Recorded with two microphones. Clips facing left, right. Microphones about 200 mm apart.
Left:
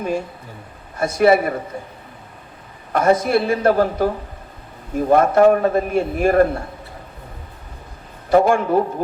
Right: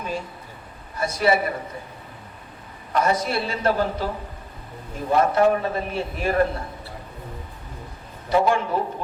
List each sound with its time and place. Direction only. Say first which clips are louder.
0.9 s a man's voice: left 6 dB; 50° left (ahead or behind)
2.9 s a man's voice: left 6 dB; 50° left (ahead or behind)
8.3 s a man's voice: left 6 dB; 50° left (ahead or behind)